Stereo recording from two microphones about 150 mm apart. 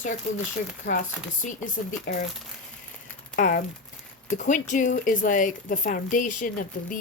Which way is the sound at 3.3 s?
60° left (ahead or behind).